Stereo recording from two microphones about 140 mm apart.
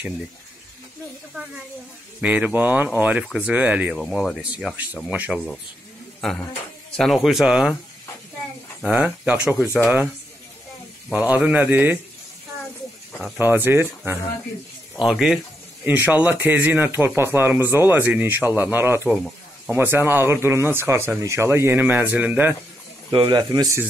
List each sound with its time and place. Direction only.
2.2 s speech: 10° right (ahead or behind)
3.9 s speech: 5° left (ahead or behind)
8.8 s speech: 10° right (ahead or behind)
11.1 s speech: 10° right (ahead or behind)
13.2 s speech: 15° right (ahead or behind)
15.0 s speech: 5° right (ahead or behind)
23.1 s a man's voice: 35° right (ahead or behind)